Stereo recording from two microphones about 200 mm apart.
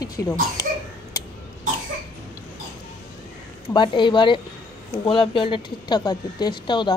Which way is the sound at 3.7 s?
25° left (ahead or behind).